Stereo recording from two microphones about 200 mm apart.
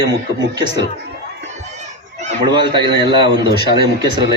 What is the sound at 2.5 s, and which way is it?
A man's voice, 25° right (ahead or behind).